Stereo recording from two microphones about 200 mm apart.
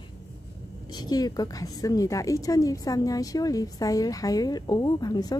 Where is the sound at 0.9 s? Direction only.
20° left (ahead or behind).